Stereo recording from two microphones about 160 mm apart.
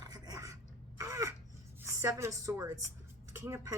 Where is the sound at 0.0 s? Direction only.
25° right (ahead or behind).